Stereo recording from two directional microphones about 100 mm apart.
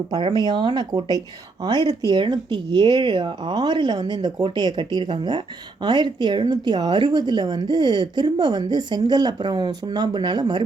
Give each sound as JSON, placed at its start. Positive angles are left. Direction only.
{"t": 0.1, "sound": "speech", "side_deg": -50}